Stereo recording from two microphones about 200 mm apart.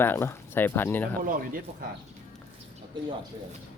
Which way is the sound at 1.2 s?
45° right (ahead or behind).